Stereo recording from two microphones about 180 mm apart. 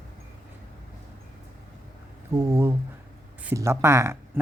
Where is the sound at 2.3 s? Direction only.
15° right (ahead or behind).